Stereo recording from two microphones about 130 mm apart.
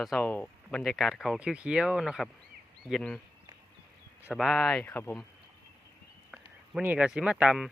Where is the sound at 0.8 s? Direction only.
Centre (ahead or behind).